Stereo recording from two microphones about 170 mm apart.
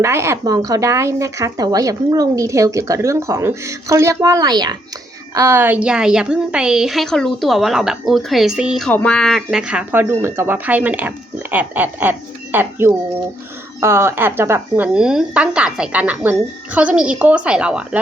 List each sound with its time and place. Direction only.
0.0 s a woman's voice: 15° right (ahead or behind)
8.9 s a woman's voice: 5° left (ahead or behind)